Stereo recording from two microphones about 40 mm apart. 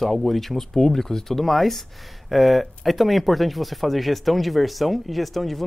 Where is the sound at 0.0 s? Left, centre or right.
Centre.